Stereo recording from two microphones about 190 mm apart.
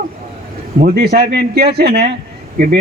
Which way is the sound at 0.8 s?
55° right (ahead or behind).